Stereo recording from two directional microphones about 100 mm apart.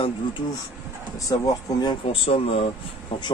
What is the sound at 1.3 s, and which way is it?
Speech, 40° left (ahead or behind).